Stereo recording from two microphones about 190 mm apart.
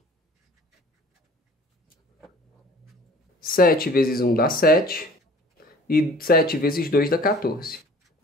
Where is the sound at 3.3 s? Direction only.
50° left (ahead or behind).